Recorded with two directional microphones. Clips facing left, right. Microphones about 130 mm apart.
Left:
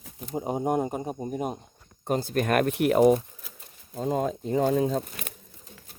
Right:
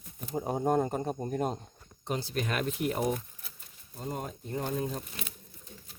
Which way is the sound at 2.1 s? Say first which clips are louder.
Left 8 dB; 50° left (ahead or behind).